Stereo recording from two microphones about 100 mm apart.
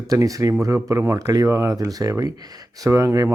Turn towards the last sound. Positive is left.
turn(degrees=-30)  # may be behind; listen again after turning